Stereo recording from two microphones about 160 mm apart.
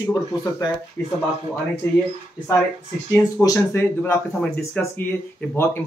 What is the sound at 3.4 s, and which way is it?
Speech, 20° left (ahead or behind).